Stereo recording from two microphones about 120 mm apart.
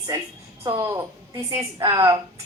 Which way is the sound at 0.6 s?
30° right (ahead or behind).